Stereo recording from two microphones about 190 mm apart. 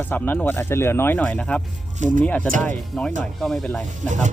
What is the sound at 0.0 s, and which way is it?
Speech, 10° left (ahead or behind).